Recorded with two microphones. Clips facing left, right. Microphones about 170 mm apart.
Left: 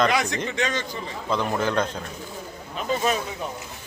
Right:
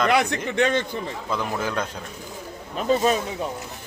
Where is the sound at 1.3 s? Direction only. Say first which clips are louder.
Left 3 dB; 10° right (ahead or behind).